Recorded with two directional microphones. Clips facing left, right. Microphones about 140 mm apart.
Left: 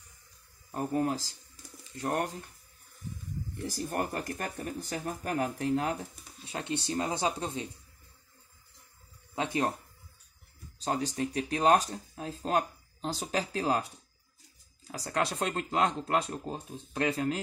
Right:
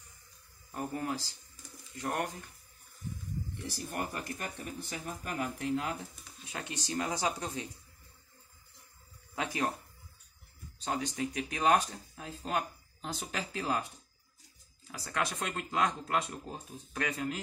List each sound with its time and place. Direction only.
0.7 s speech: 35° left (ahead or behind)
3.6 s speech: 45° left (ahead or behind); by 7.6 s 25° left (ahead or behind)
9.3 s speech: 25° left (ahead or behind)
10.8 s speech: 35° left (ahead or behind)
14.9 s speech: 35° left (ahead or behind)